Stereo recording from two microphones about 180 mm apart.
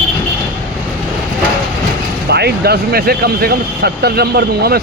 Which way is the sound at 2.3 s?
65° right (ahead or behind).